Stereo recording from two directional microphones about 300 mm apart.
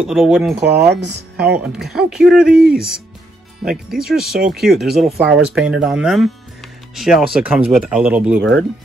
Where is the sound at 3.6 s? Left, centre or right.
Centre.